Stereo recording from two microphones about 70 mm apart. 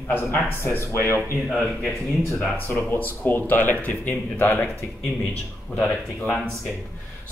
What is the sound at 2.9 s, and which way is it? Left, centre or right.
Speech, left.